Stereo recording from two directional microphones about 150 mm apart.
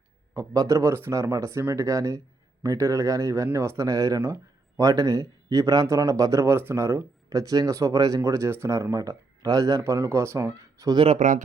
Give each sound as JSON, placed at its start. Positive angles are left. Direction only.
{"t": 0.3, "sound": "speech", "side_deg": -20}
{"t": 10.9, "sound": "speech", "side_deg": -40}
{"t": 11.2, "sound": "speech", "side_deg": -55}